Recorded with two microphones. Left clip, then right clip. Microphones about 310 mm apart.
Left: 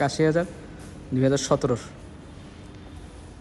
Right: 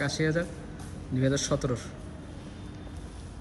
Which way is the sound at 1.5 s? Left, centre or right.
Left.